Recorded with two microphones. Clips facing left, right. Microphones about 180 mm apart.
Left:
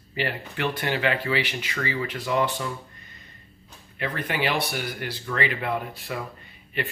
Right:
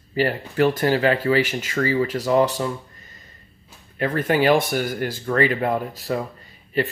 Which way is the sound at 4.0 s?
45° right (ahead or behind).